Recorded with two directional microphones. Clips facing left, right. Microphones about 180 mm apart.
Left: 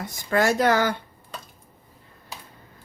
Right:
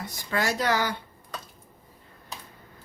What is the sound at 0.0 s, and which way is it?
Speech, 50° left (ahead or behind).